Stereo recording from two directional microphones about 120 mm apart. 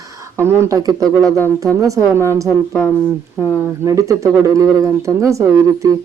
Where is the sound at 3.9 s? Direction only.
25° right (ahead or behind).